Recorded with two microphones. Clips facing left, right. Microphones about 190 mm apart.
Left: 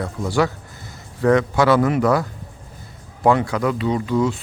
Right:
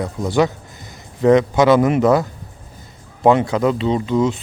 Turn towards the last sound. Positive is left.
turn(degrees=-20)  # may be behind; listen again after turning